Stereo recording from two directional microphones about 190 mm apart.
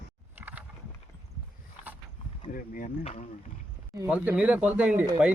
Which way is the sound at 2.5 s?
45° left (ahead or behind).